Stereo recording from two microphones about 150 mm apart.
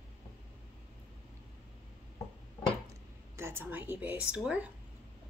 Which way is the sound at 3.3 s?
15° right (ahead or behind).